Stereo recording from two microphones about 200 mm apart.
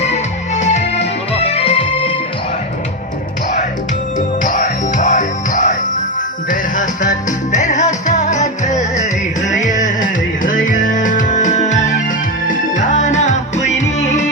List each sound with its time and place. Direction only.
0.6 s music: 35° left (ahead or behind)
4.4 s music: 40° left (ahead or behind)